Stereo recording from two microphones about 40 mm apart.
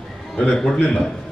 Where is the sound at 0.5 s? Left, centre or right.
Centre.